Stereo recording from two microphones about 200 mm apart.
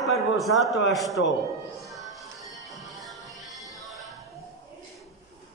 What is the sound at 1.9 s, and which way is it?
Music, centre (ahead or behind).